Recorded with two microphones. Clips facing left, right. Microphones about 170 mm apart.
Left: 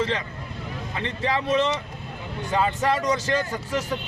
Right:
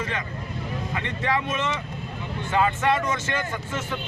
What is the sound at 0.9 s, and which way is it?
Speech, 30° left (ahead or behind).